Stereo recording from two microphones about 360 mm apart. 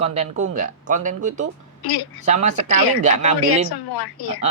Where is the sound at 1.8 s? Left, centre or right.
Left.